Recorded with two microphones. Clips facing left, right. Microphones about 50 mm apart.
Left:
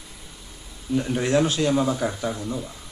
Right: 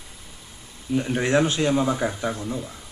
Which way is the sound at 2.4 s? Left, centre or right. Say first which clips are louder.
Even; centre.